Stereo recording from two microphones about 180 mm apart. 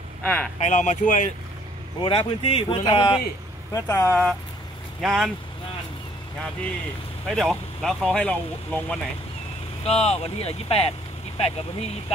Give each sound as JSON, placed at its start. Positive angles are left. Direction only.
{"t": 0.2, "sound": "speech", "side_deg": 5}
{"t": 0.6, "sound": "speech", "side_deg": 40}
{"t": 2.0, "sound": "speech", "side_deg": 30}
{"t": 3.7, "sound": "speech", "side_deg": 15}
{"t": 5.0, "sound": "speech", "side_deg": 0}
{"t": 7.2, "sound": "speech", "side_deg": 0}
{"t": 9.8, "sound": "speech", "side_deg": 35}